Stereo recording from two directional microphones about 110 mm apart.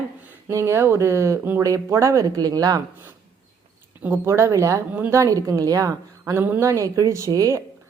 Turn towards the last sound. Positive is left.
turn(degrees=-30)  # may be behind; listen again after turning